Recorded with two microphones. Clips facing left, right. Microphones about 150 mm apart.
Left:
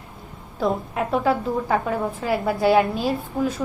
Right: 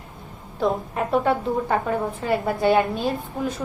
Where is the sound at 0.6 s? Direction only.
Centre (ahead or behind).